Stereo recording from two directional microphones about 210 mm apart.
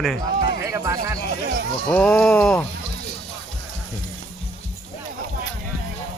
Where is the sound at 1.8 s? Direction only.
5° left (ahead or behind).